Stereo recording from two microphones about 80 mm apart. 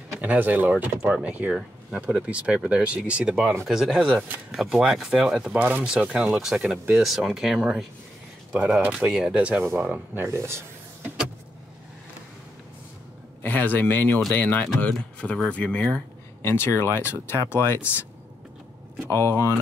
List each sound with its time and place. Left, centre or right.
0.2 s speech: right; by 5.6 s centre
5.6 s speech: right
5.9 s speech: centre
8.9 s speech: centre
10.1 s speech: right
13.4 s speech: centre
16.4 s speech: left
19.0 s speech: left